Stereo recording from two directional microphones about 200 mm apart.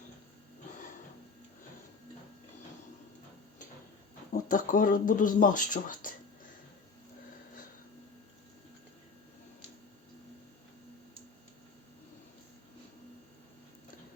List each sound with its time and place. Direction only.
4.3 s speech: 40° left (ahead or behind)